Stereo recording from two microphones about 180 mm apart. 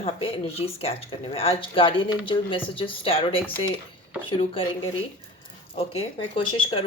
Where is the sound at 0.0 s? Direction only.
30° left (ahead or behind).